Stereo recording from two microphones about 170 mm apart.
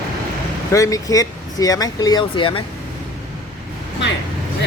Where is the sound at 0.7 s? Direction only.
20° left (ahead or behind).